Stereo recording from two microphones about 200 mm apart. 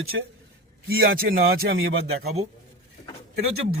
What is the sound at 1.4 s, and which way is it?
Speech, 80° right.